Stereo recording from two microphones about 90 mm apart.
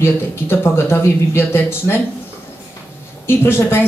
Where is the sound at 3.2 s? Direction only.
25° left (ahead or behind).